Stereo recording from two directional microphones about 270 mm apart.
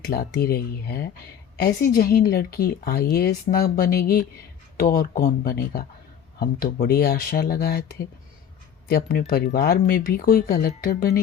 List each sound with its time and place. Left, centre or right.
0.0 s a woman's voice: left